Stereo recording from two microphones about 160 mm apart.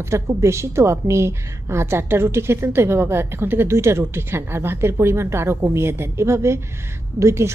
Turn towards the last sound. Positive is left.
turn(degrees=-15)  # may be behind; listen again after turning